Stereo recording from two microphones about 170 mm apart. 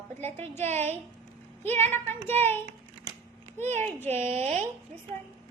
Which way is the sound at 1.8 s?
10° left (ahead or behind).